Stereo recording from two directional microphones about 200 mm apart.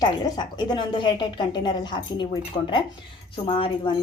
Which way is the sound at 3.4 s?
25° left (ahead or behind).